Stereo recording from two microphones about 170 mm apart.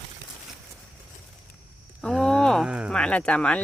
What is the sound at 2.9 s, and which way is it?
Speech, 5° left (ahead or behind).